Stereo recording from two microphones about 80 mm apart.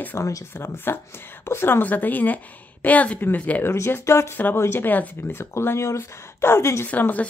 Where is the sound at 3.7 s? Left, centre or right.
Left.